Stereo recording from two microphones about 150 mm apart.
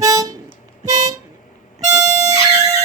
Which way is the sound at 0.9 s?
25° right (ahead or behind).